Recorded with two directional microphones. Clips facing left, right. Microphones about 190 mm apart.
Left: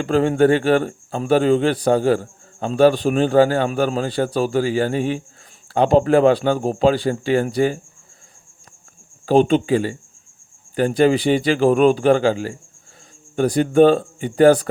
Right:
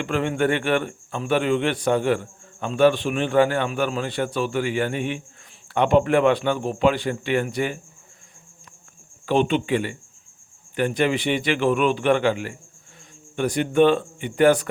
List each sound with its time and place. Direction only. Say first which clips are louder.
0.0 s a man's voice: left 7 dB; 35° left (ahead or behind)
9.2 s a man's voice: left 6 dB; 40° left (ahead or behind)